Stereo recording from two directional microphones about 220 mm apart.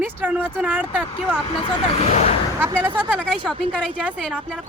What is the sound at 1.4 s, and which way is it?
Speech, 20° left (ahead or behind).